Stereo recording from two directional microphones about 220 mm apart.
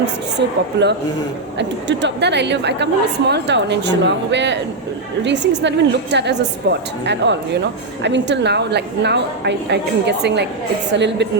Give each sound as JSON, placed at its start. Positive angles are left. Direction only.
{"t": 0.0, "sound": "a woman's voice", "side_deg": -50}